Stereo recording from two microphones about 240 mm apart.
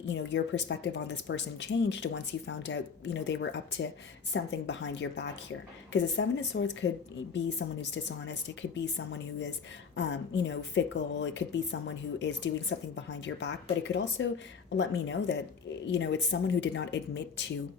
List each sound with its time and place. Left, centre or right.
0.1 s speech: left